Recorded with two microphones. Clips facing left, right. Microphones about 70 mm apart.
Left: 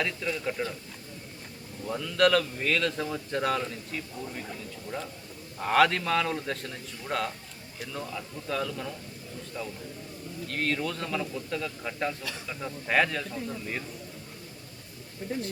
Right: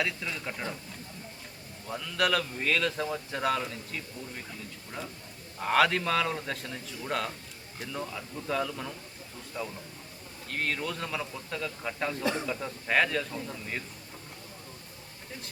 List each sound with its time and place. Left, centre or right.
0.0 s speech: centre
1.9 s speech: centre
5.5 s speech: centre
12.2 s speech: right
12.5 s speech: centre